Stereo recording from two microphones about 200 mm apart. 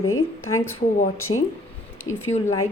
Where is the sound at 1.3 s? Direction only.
25° left (ahead or behind).